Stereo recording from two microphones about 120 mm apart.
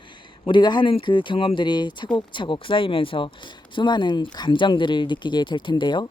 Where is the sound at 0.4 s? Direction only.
40° left (ahead or behind).